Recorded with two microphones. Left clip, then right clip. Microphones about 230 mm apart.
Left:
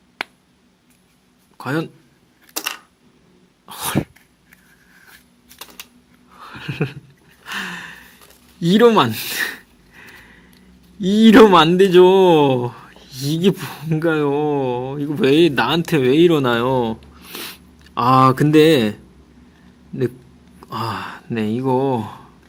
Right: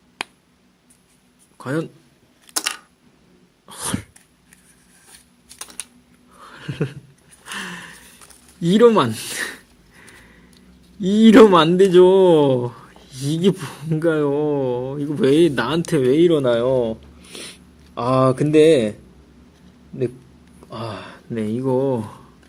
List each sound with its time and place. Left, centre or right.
1.5 s speech: centre
2.6 s coin: centre
3.7 s sneeze: centre
6.3 s a sound: centre
8.6 s sniff: centre
11.0 s speech: centre; by 17.6 s left
18.3 s mantra: centre
20.7 s speech: left; by 22.2 s centre